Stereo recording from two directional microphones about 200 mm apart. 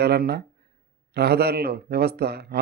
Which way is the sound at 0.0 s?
55° right (ahead or behind).